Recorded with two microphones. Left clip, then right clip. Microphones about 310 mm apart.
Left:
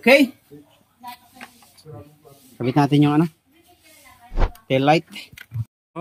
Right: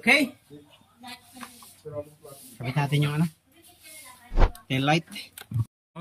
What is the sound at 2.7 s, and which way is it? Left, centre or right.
Speech, centre.